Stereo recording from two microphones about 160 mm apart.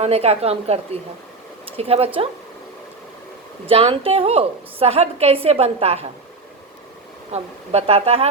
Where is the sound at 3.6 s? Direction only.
35° right (ahead or behind).